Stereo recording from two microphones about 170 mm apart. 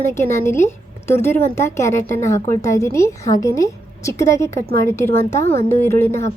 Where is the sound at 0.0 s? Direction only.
15° left (ahead or behind).